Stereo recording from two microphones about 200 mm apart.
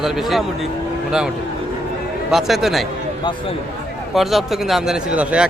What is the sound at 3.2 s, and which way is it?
Speech, 20° left (ahead or behind).